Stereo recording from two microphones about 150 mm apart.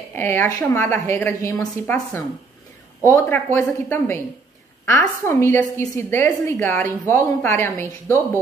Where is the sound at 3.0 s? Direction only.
15° left (ahead or behind).